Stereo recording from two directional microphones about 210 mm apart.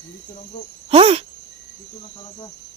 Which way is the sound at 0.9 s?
25° right (ahead or behind).